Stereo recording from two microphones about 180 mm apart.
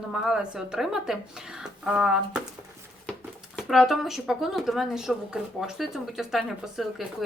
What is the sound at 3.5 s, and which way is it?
Speech, centre (ahead or behind).